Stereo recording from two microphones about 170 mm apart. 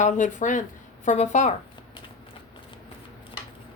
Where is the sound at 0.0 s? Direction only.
45° left (ahead or behind).